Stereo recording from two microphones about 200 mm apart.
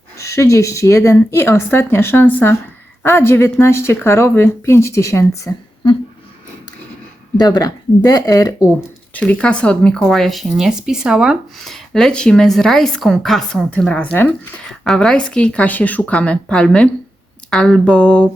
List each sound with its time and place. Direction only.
0.2 s a woman's voice: 15° left (ahead or behind)
7.3 s speech: 20° left (ahead or behind)
9.1 s speech: 5° left (ahead or behind)